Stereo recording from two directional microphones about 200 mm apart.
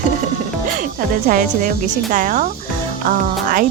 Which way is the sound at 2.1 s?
40° right (ahead or behind).